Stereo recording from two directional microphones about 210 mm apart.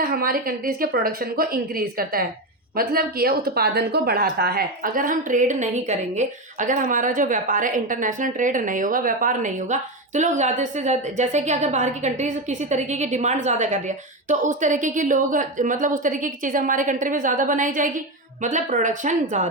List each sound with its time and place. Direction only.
0.0 s a woman's voice: 45° right (ahead or behind)